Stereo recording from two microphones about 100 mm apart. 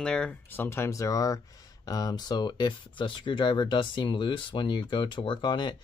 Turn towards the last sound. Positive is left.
turn(degrees=50)  # may be behind; listen again after turning